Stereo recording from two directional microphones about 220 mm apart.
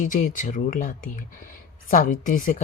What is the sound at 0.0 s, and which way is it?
A woman's voice, 35° left (ahead or behind).